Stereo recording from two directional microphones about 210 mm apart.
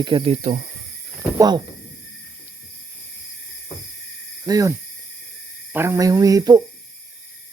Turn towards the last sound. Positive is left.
turn(degrees=-15)  # may be behind; listen again after turning